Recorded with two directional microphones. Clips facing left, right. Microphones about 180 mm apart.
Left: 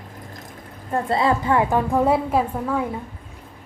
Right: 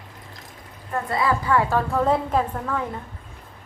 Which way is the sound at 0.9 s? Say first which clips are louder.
Left 3 dB; 25° left (ahead or behind).